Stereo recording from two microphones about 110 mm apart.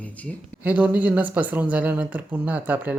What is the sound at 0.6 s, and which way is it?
Speech, 15° right (ahead or behind).